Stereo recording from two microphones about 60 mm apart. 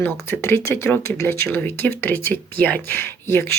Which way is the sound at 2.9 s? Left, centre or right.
Left.